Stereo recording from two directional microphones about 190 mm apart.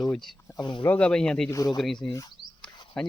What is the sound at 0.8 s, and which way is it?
Speech, 10° left (ahead or behind).